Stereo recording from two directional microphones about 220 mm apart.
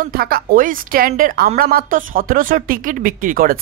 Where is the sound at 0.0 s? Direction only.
40° right (ahead or behind).